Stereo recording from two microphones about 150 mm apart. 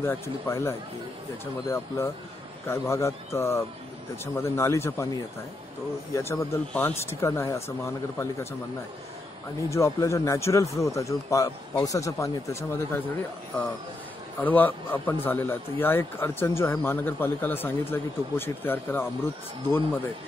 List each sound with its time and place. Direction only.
0.0 s a man's voice: 15° left (ahead or behind)
9.7 s a man's voice: 20° left (ahead or behind)
14.4 s speech: 10° left (ahead or behind)